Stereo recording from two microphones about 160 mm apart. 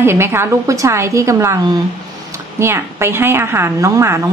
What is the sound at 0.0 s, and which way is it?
A woman's voice, 15° right (ahead or behind).